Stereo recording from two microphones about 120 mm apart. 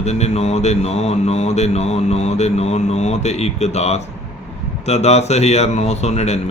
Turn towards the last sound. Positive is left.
turn(degrees=65)  # may be behind; listen again after turning